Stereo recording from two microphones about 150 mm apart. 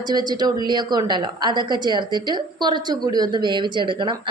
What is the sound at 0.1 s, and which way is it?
A woman's voice, 30° right (ahead or behind).